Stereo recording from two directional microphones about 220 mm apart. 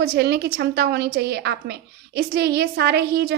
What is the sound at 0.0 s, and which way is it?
A woman's voice, 45° right (ahead or behind).